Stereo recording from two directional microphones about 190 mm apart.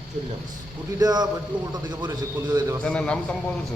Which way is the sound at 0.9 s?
20° right (ahead or behind).